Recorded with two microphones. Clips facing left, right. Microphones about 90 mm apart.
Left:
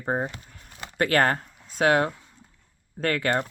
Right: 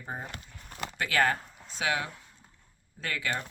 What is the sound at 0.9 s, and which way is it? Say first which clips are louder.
Speech: left 5 dB; 50° left (ahead or behind).